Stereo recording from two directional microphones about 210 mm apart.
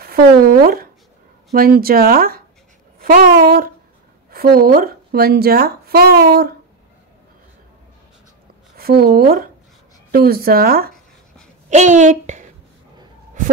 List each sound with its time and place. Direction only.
0.0 s speech: 45° right (ahead or behind)
8.7 s a woman's voice: 45° right (ahead or behind)
11.7 s a woman's voice: 35° right (ahead or behind)